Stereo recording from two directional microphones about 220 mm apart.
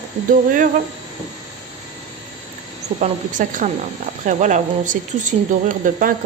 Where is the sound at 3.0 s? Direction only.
35° right (ahead or behind).